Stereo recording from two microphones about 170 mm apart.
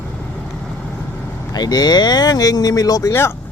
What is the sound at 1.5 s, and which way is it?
Speech, 25° left (ahead or behind).